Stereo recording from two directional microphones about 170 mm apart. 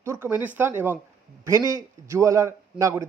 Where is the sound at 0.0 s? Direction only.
15° right (ahead or behind).